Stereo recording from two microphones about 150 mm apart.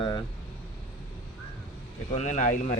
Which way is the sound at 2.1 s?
50° left (ahead or behind).